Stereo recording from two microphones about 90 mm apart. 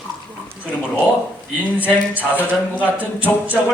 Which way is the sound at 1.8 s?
15° right (ahead or behind).